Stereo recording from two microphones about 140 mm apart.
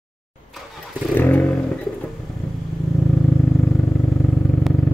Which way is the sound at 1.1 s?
15° left (ahead or behind).